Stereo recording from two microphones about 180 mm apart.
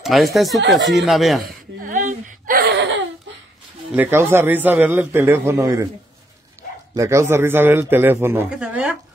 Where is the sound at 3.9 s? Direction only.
10° right (ahead or behind).